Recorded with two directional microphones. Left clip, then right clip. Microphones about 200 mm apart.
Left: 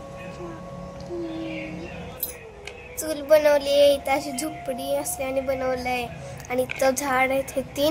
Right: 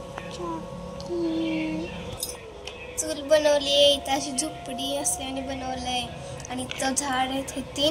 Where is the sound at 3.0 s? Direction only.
50° left (ahead or behind).